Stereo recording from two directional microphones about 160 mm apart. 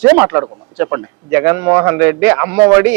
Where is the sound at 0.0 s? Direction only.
15° right (ahead or behind).